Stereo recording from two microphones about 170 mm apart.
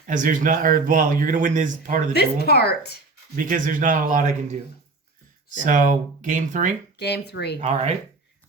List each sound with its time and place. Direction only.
0.1 s speech: 50° right (ahead or behind)
2.1 s a woman's voice: 70° left (ahead or behind)
3.3 s speech: 50° right (ahead or behind)
5.6 s speech: 50° right (ahead or behind)
6.9 s speech: 80° left
7.6 s speech: 40° right (ahead or behind)